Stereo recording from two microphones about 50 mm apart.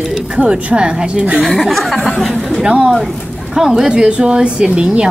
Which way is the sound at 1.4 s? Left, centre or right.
Centre.